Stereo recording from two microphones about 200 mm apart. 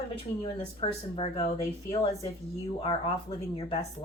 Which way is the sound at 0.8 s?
30° left (ahead or behind).